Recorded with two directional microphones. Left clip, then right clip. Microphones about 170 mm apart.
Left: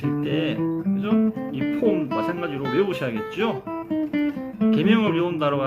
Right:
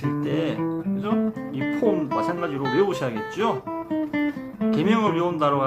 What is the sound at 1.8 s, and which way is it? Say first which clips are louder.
Speech: even; 5° left (ahead or behind).